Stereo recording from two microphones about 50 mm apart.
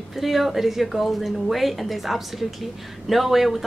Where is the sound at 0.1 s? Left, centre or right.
Centre.